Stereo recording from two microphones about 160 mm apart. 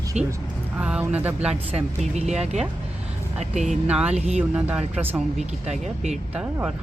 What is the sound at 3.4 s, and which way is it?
Speech, 45° right (ahead or behind).